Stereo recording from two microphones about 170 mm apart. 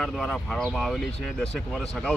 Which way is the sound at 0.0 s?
5° left (ahead or behind).